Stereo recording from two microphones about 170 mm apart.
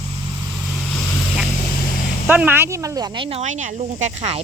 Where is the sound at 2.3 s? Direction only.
10° right (ahead or behind).